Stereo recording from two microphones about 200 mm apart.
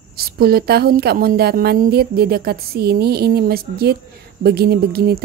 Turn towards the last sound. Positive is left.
turn(degrees=-50)  # may be behind; listen again after turning